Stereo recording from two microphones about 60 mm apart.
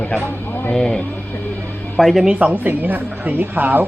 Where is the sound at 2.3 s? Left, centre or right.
Right.